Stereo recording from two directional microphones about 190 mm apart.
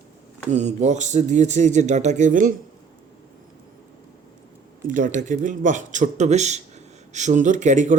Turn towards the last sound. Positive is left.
turn(degrees=-40)  # may be behind; listen again after turning